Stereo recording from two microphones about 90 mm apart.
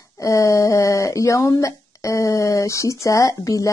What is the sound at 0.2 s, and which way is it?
Speech, 35° left (ahead or behind).